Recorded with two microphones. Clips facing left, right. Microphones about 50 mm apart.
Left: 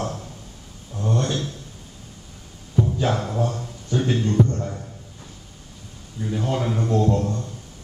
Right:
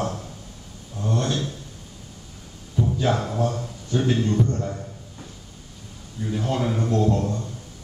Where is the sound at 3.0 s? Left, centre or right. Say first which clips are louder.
Even; centre.